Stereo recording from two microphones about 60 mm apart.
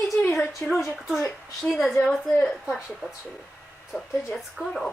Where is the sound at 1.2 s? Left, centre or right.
Centre.